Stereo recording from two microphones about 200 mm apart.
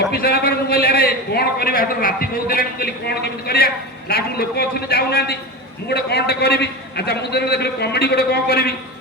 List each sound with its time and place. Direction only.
0.1 s a man's voice: 50° left (ahead or behind)